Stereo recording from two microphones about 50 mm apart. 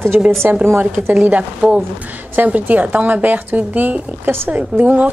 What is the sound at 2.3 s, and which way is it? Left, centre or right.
A woman's voice, right.